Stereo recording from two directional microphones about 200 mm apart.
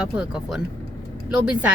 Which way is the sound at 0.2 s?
5° right (ahead or behind).